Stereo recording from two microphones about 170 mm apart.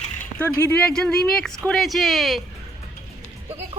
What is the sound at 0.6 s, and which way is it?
Speech, 10° left (ahead or behind).